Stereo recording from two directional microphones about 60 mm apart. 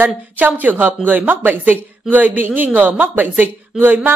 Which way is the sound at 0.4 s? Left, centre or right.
Right.